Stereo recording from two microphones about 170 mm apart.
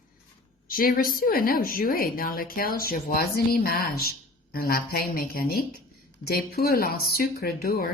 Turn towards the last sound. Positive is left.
turn(degrees=60)  # may be behind; listen again after turning